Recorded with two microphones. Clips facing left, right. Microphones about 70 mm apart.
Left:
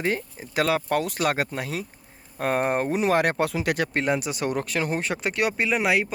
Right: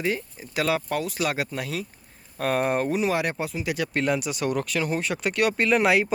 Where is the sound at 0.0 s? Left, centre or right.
Left.